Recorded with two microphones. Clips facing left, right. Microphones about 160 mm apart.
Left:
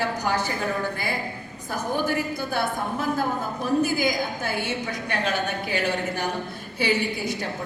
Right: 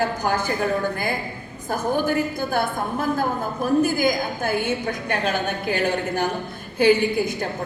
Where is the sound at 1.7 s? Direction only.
50° right (ahead or behind).